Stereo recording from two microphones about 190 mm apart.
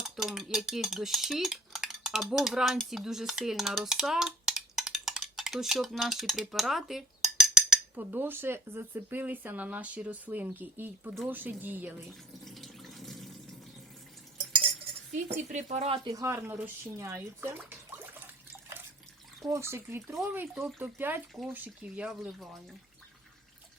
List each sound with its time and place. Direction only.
0.0 s cutlery: centre (ahead or behind)
12.5 s water tap: centre (ahead or behind)
15.1 s speech: 40° right (ahead or behind)
16.0 s cutlery: 15° right (ahead or behind)
17.7 s water: 10° right (ahead or behind)
19.5 s cutlery: 15° right (ahead or behind)
21.5 s speech: 10° right (ahead or behind)